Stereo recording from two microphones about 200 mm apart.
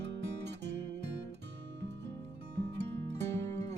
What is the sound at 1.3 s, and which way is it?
Music, 60° right (ahead or behind).